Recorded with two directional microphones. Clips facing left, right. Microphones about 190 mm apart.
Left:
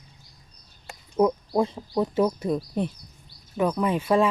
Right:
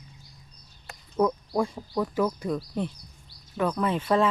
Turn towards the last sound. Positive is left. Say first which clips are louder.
# left 2 dB
turn(degrees=10)  # may be behind; listen again after turning